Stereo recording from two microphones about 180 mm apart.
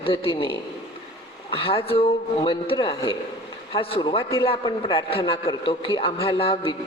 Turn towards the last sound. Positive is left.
turn(degrees=30)  # may be behind; listen again after turning